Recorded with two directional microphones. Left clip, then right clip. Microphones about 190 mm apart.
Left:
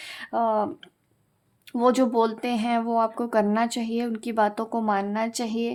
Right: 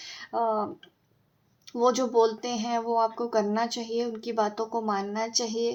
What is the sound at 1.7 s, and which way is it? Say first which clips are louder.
Speech: left 2 dB; 40° left (ahead or behind).